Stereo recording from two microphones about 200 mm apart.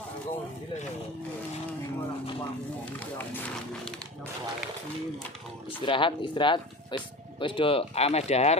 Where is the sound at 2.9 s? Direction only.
10° left (ahead or behind).